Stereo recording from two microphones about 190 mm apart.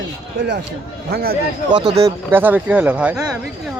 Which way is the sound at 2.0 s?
10° right (ahead or behind).